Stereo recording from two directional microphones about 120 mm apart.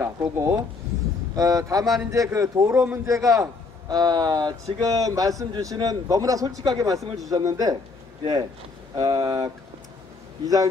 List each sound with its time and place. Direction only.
0.0 s speech: 20° right (ahead or behind)
8.9 s speech: 30° right (ahead or behind)